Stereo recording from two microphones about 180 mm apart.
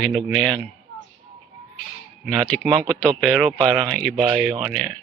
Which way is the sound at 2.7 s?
25° right (ahead or behind).